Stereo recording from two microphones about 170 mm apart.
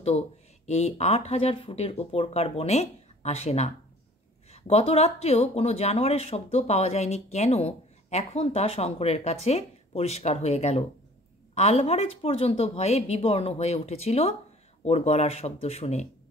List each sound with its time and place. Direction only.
0.7 s speech: 40° left (ahead or behind)